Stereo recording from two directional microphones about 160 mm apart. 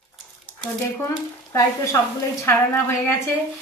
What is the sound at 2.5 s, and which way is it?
Speech, 15° left (ahead or behind).